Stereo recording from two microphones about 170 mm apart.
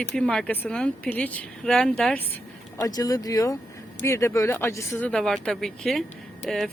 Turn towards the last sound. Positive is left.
turn(degrees=0)  # may be behind; listen again after turning